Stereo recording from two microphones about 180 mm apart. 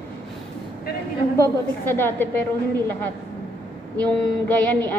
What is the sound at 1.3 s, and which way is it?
A woman's voice, 10° left (ahead or behind).